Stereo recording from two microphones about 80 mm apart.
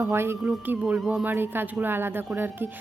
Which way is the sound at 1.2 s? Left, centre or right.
Right.